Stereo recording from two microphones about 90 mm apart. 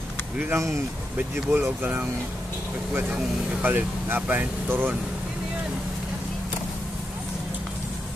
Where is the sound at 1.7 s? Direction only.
20° right (ahead or behind).